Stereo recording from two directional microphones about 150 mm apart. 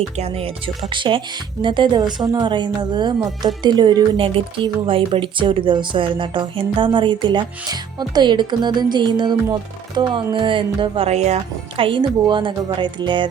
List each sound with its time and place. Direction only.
0.2 s speech: 40° right (ahead or behind)
11.8 s speech: 35° right (ahead or behind)